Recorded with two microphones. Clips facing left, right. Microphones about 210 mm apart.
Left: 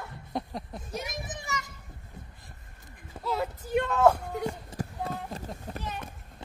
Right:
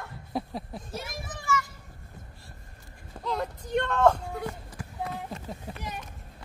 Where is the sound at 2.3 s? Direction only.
20° left (ahead or behind).